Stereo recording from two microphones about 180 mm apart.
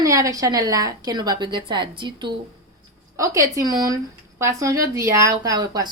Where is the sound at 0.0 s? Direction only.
20° right (ahead or behind).